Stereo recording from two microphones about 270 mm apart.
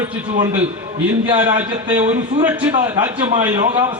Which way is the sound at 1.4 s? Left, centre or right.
Centre.